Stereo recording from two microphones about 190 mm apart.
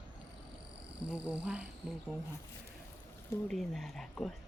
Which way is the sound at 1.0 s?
5° right (ahead or behind).